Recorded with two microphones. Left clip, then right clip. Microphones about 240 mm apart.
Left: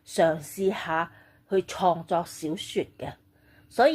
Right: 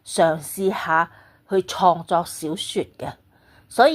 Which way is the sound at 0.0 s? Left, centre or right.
Centre.